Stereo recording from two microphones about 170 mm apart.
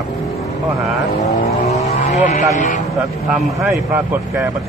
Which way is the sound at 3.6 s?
10° right (ahead or behind).